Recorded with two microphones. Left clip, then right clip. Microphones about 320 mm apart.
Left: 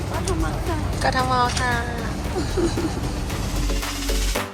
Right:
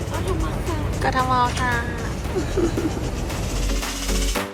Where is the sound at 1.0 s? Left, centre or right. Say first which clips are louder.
Even; centre.